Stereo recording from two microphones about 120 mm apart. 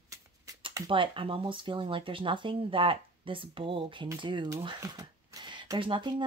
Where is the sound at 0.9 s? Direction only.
45° right (ahead or behind).